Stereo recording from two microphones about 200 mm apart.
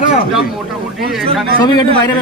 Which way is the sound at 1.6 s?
20° left (ahead or behind).